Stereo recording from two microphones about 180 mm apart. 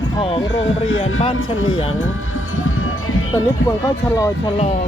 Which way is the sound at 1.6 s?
90° left.